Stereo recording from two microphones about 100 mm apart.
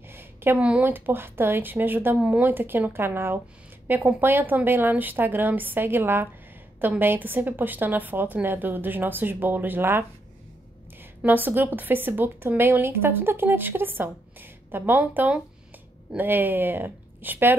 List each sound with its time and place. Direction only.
0.1 s a sound: 25° right (ahead or behind)
0.6 s a woman's voice: 15° right (ahead or behind)
11.2 s a woman's voice: 20° right (ahead or behind)